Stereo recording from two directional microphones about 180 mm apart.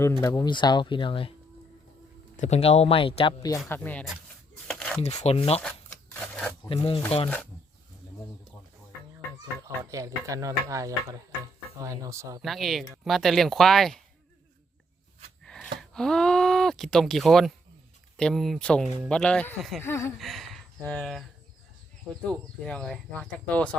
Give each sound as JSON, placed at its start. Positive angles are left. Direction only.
{"t": 0.0, "sound": "speech", "side_deg": 15}
{"t": 2.3, "sound": "speech", "side_deg": 40}
{"t": 3.7, "sound": "speech", "side_deg": 10}
{"t": 4.7, "sound": "a sound", "side_deg": 5}
{"t": 5.2, "sound": "speech", "side_deg": 35}
{"t": 6.1, "sound": "a sound", "side_deg": 5}
{"t": 6.7, "sound": "speech", "side_deg": 30}
{"t": 9.9, "sound": "speech", "side_deg": -20}
{"t": 12.4, "sound": "speech", "side_deg": 0}
{"t": 15.4, "sound": "gasp", "side_deg": 5}
{"t": 15.8, "sound": "speech", "side_deg": 0}
{"t": 20.1, "sound": "speech", "side_deg": 0}
{"t": 22.3, "sound": "speech", "side_deg": 5}